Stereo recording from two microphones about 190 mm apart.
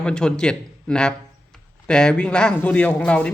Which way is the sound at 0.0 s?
5° left (ahead or behind).